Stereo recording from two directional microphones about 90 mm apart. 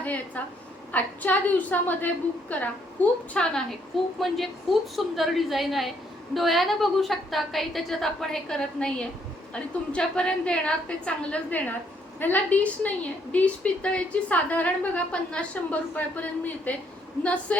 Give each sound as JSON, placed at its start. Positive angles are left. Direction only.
{"t": 0.0, "sound": "a woman's voice", "side_deg": 15}
{"t": 4.2, "sound": "a woman's voice", "side_deg": 0}